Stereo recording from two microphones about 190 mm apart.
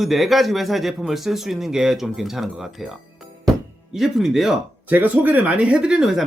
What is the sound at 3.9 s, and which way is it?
Speech, centre (ahead or behind).